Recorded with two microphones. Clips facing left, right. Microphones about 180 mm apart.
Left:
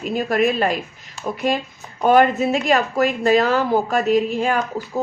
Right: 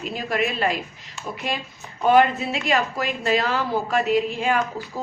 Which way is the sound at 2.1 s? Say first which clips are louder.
Left 3 dB; 45° left (ahead or behind).